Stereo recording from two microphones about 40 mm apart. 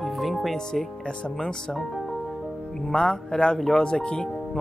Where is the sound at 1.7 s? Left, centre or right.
Centre.